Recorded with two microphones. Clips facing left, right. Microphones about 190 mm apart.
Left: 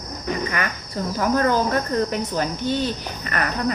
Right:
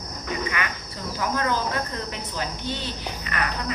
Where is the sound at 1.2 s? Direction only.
45° left (ahead or behind).